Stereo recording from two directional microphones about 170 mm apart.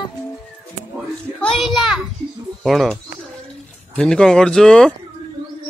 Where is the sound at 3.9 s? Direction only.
5° left (ahead or behind).